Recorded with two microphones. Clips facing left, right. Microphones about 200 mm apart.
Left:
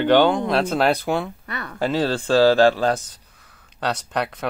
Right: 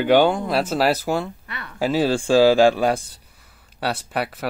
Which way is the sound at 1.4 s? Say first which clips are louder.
Left 5 dB; 40° left (ahead or behind).